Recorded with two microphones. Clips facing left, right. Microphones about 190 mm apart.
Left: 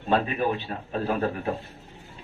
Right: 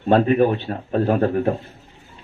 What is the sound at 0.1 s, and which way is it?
A man's voice, 50° right (ahead or behind).